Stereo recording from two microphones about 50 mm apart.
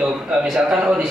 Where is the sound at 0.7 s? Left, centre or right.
Centre.